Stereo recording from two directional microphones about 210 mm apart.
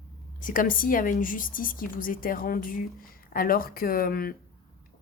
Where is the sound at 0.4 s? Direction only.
40° left (ahead or behind).